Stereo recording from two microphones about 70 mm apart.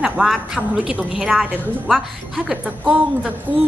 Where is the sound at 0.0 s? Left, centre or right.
Centre.